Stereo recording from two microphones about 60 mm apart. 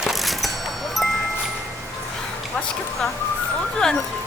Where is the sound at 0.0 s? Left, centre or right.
Centre.